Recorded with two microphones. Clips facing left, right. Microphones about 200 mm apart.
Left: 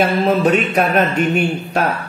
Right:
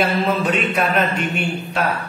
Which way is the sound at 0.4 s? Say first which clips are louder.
Left 5 dB; 40° left (ahead or behind).